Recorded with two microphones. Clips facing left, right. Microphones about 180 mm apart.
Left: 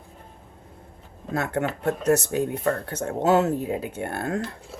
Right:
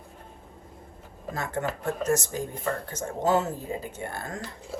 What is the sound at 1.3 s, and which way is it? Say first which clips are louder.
Speech: left 5 dB; 65° left (ahead or behind).